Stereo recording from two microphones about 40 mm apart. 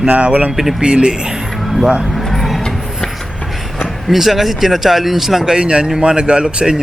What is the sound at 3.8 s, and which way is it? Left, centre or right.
Speech, centre.